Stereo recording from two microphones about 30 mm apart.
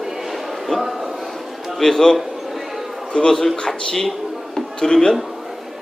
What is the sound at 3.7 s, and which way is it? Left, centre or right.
Speech, centre.